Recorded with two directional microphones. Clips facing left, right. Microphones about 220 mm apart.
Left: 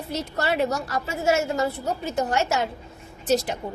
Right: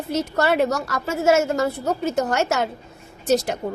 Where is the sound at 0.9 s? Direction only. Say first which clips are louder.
Right 4 dB; 45° right (ahead or behind).